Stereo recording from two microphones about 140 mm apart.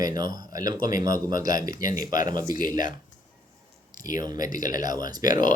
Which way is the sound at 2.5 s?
75° left (ahead or behind).